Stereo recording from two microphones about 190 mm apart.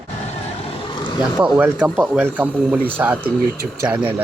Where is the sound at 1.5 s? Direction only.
5° right (ahead or behind).